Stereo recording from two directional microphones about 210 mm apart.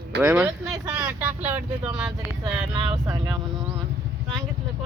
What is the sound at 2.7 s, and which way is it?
Speech, 20° right (ahead or behind).